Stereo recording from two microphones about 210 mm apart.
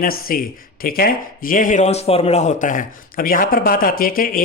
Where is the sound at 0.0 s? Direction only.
45° left (ahead or behind).